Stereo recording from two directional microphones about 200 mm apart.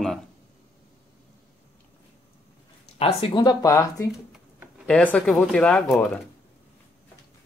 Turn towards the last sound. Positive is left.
turn(degrees=5)  # may be behind; listen again after turning